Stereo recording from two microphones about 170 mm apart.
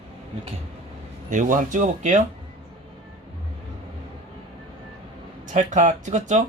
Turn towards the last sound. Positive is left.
turn(degrees=-45)  # may be behind; listen again after turning